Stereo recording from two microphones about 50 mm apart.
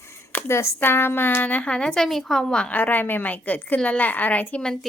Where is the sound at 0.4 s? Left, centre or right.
Left.